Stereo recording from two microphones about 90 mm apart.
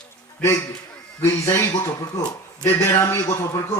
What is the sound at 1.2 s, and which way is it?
A man's voice, 30° left (ahead or behind).